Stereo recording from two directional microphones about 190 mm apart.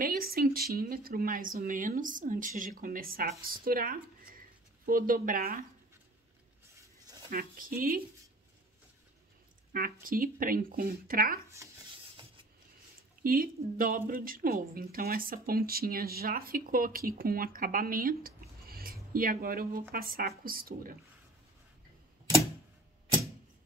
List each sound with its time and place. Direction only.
0.0 s a woman's voice: 50° right (ahead or behind)
7.2 s a woman's voice: 45° right (ahead or behind)
9.7 s a woman's voice: 50° right (ahead or behind)
13.2 s a woman's voice: 50° right (ahead or behind)